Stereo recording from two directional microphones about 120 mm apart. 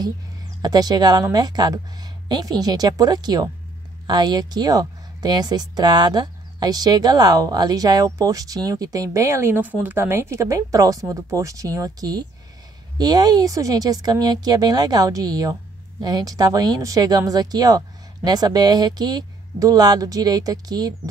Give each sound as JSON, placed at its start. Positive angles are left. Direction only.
{"t": 0.6, "sound": "speech", "side_deg": -35}